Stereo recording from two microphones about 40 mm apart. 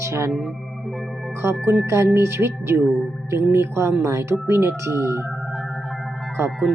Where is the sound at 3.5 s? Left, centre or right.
Right.